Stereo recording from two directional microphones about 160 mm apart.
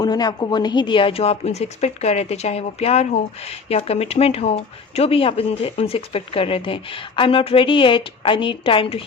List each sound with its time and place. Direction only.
0.0 s a woman's voice: 25° left (ahead or behind)